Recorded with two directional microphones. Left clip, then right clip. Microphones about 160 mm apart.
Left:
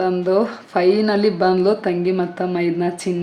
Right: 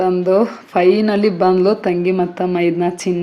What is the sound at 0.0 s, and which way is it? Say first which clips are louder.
A woman's voice: right 3 dB; 20° right (ahead or behind).